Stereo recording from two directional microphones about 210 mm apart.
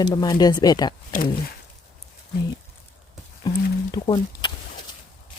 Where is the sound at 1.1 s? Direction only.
40° left (ahead or behind).